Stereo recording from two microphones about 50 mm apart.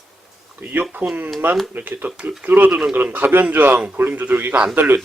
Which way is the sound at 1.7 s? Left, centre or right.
Right.